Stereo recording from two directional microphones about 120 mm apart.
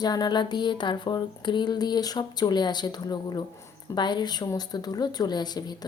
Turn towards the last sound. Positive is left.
turn(degrees=35)  # may be behind; listen again after turning